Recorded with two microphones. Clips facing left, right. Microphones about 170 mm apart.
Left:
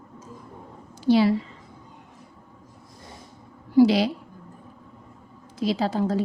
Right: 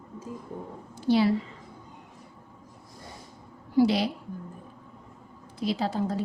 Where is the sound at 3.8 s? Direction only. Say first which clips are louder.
Left 5 dB; 90° left.